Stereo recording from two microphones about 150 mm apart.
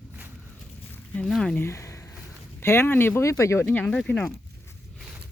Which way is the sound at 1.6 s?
20° left (ahead or behind).